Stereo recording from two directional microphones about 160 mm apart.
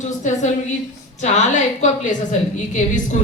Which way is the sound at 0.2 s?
50° left (ahead or behind).